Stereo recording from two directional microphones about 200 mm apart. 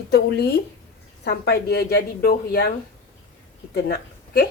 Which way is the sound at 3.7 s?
50° left (ahead or behind).